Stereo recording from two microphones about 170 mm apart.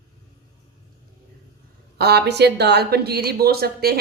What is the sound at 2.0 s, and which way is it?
Speech, 75° right (ahead or behind).